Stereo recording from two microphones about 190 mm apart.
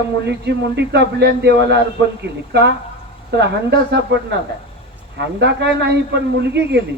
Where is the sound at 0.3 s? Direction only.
65° right (ahead or behind).